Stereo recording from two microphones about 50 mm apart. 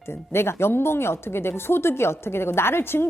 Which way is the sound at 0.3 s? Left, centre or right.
Left.